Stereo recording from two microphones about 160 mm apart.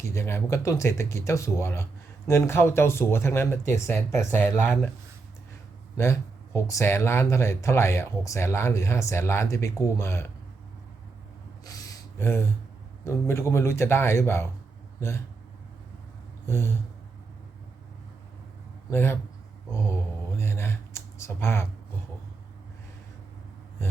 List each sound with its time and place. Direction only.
0.0 s speech: 15° left (ahead or behind)
6.0 s speech: 15° left (ahead or behind)
11.6 s a sound: 20° left (ahead or behind)
13.1 s speech: 15° left (ahead or behind)
16.5 s speech: 15° left (ahead or behind)
18.9 s speech: 15° left (ahead or behind)
19.7 s a sound: 15° left (ahead or behind)